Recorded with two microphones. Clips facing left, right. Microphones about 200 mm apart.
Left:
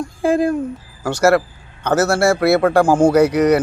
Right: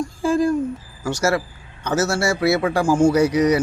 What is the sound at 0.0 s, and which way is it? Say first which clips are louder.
Speech: left 2 dB; 60° left (ahead or behind).